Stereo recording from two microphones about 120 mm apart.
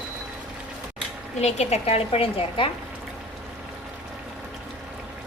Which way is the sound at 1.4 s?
65° left (ahead or behind).